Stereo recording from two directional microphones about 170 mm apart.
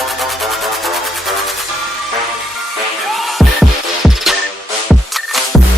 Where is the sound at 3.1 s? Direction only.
Centre (ahead or behind).